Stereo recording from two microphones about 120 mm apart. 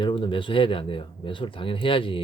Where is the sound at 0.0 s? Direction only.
45° left (ahead or behind).